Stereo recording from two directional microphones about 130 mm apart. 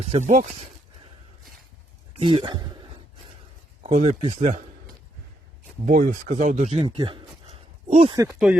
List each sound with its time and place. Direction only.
0.1 s speech: 65° right (ahead or behind)
2.1 s speech: 40° right (ahead or behind)
3.8 s speech: 60° right (ahead or behind)
5.8 s speech: 80° right; by 6.8 s 60° right (ahead or behind)
6.8 s speech: 40° right (ahead or behind)
8.1 s speech: 25° right (ahead or behind)